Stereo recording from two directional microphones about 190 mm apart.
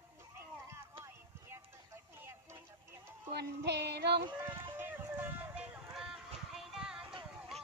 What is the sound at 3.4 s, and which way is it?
Music, 60° right (ahead or behind).